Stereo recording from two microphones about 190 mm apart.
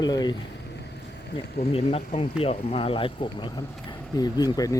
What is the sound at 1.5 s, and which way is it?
Speech, 30° left (ahead or behind).